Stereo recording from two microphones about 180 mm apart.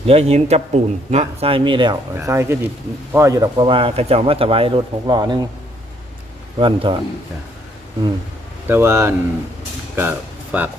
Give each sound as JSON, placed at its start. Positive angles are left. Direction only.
{"t": 0.1, "sound": "speech", "side_deg": -35}
{"t": 2.1, "sound": "speech", "side_deg": -15}
{"t": 6.6, "sound": "speech", "side_deg": -30}
{"t": 8.6, "sound": "speech", "side_deg": -10}
{"t": 9.9, "sound": "a sound", "side_deg": -10}